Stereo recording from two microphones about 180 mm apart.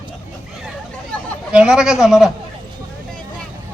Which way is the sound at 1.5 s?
5° right (ahead or behind).